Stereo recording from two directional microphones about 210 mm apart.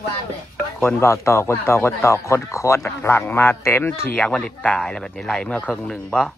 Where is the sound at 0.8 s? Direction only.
10° left (ahead or behind).